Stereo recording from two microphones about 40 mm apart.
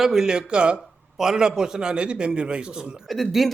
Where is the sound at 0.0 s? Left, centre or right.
Centre.